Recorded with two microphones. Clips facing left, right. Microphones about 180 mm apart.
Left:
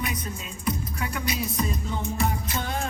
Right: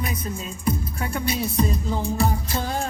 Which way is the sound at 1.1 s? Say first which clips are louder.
Right 6 dB; 30° right (ahead or behind).